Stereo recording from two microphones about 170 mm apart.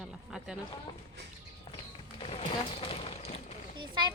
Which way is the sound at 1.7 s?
35° left (ahead or behind).